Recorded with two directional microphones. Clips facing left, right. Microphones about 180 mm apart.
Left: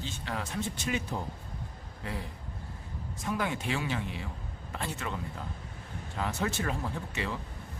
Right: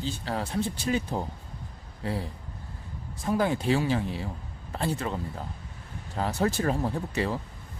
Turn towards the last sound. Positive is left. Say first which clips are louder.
# right 6 dB
turn(degrees=-35)  # may be behind; listen again after turning